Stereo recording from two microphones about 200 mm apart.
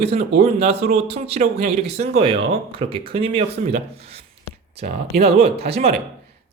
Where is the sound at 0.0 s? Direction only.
30° right (ahead or behind).